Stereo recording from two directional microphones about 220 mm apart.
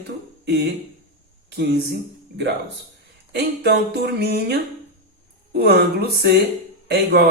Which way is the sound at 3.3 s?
50° right (ahead or behind).